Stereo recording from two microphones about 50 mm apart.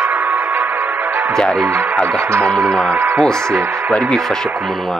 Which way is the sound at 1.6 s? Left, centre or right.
Right.